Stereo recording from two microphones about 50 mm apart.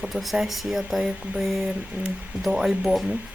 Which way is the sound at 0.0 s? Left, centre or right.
Centre.